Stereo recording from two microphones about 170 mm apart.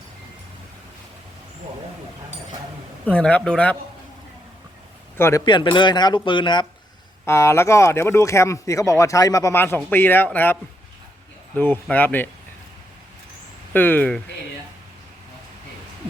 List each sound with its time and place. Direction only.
3.1 s speech: 10° left (ahead or behind)
5.1 s speech: 15° left (ahead or behind)
5.5 s speech: 25° left (ahead or behind)
7.3 s speech: 15° left (ahead or behind)
13.7 s speech: 10° left (ahead or behind)